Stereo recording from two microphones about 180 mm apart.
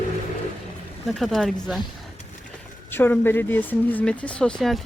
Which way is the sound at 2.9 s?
10° left (ahead or behind).